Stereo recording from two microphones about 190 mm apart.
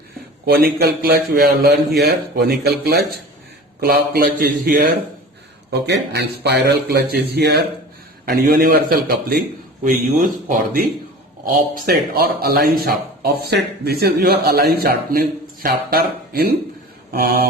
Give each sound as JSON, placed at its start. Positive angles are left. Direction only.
{"t": 0.4, "sound": "speech", "side_deg": -55}
{"t": 5.7, "sound": "speech", "side_deg": -60}